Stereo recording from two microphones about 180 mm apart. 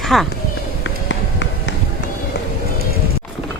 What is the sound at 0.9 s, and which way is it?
Run, 90° left.